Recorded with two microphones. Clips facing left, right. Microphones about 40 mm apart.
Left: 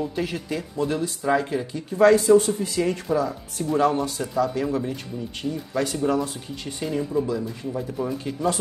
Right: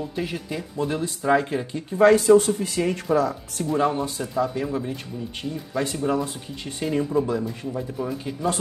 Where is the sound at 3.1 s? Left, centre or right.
Right.